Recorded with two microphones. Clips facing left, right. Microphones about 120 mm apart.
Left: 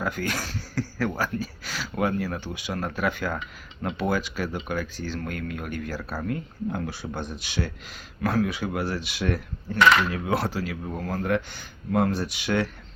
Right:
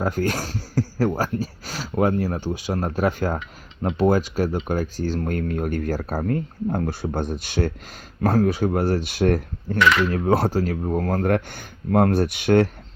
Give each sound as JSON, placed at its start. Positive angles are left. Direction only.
{"t": 0.0, "sound": "speech", "side_deg": -40}